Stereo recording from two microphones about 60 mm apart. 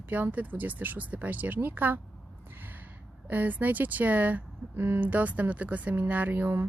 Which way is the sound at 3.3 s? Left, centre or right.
Right.